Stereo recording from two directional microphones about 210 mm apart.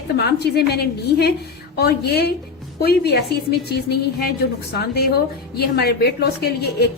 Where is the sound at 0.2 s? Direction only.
50° left (ahead or behind).